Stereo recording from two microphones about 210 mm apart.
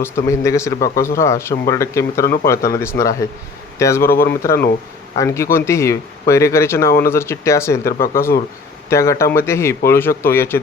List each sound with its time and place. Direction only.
0.0 s speech: 15° left (ahead or behind)
7.9 s speech: 45° left (ahead or behind)
8.9 s speech: 15° left (ahead or behind)